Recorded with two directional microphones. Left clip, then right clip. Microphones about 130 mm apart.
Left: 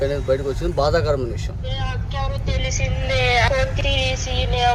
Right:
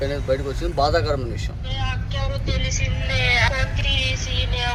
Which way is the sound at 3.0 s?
40° left (ahead or behind).